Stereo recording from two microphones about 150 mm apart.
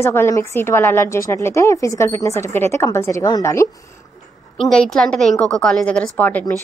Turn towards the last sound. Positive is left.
turn(degrees=10)  # may be behind; listen again after turning